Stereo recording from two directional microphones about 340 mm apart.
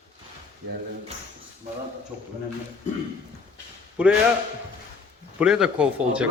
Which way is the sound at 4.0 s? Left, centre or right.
Centre.